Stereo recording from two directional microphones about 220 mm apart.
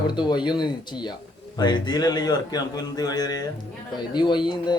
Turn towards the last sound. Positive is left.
turn(degrees=20)  # may be behind; listen again after turning